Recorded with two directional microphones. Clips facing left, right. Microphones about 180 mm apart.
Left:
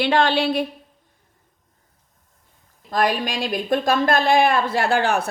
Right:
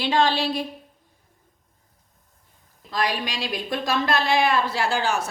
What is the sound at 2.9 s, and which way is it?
A woman's voice, 50° left (ahead or behind).